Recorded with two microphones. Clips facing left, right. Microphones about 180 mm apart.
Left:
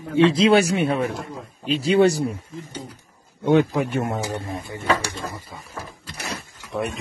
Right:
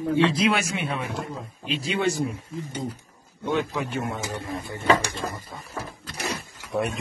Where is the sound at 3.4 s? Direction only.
50° left (ahead or behind).